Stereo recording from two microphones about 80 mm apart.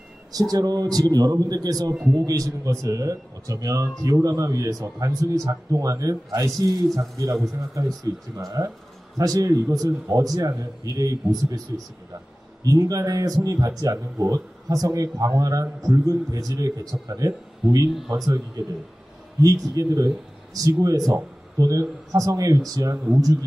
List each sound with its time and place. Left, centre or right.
0.3 s speech: right
19.4 s speech: right